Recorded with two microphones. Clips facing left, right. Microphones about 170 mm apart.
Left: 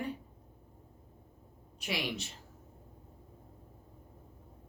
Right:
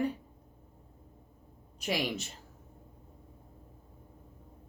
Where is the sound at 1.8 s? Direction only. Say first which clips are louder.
Right 4 dB; 45° right (ahead or behind).